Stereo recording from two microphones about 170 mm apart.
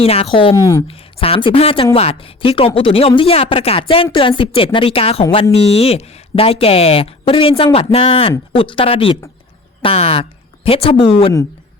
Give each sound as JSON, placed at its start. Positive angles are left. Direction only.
{"t": 0.0, "sound": "speech", "side_deg": 35}
{"t": 0.5, "sound": "speech", "side_deg": 20}
{"t": 0.9, "sound": "speech", "side_deg": 35}